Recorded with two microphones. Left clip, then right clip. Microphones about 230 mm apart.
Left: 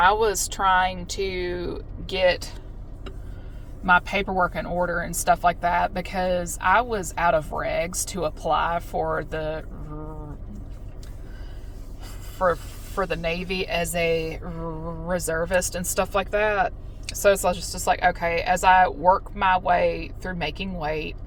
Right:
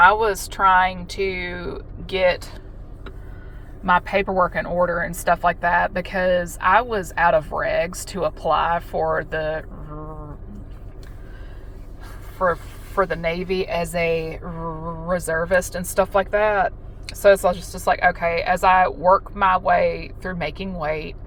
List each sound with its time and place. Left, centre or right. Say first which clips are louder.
0.0 s speech: right 4 dB; centre
4.3 s speech: right 4 dB; right
12.4 s speech: right 2 dB; right